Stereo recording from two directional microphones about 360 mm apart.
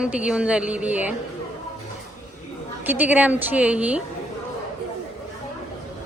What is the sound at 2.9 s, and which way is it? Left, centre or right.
A woman's voice, centre.